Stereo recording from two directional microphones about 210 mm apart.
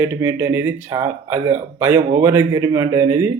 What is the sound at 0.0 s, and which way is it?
Speech, 15° right (ahead or behind).